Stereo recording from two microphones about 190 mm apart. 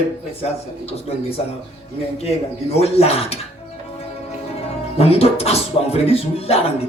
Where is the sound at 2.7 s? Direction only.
30° left (ahead or behind).